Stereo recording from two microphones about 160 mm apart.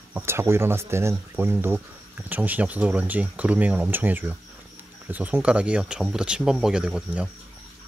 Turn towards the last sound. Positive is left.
turn(degrees=-5)  # may be behind; listen again after turning